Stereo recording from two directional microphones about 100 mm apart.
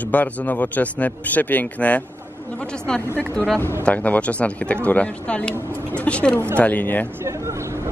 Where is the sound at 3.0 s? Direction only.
20° right (ahead or behind).